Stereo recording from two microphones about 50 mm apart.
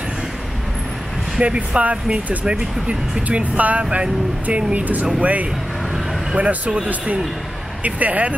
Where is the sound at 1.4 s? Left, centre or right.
Right.